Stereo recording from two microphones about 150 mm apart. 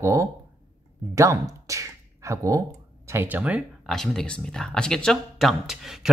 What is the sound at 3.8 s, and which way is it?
Speech, 5° left (ahead or behind).